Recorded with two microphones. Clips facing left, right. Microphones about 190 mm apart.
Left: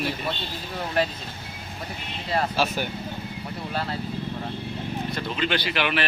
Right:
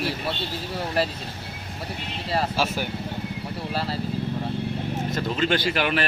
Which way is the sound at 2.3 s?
5° right (ahead or behind).